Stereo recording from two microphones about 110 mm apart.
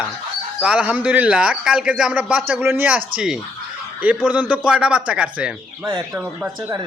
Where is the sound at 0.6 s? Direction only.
10° right (ahead or behind).